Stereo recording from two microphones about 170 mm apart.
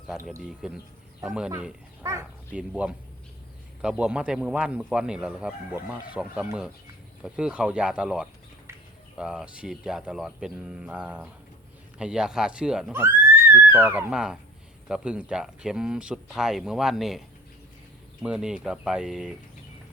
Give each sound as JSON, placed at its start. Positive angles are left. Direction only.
{"t": 0.4, "sound": "speech", "side_deg": -5}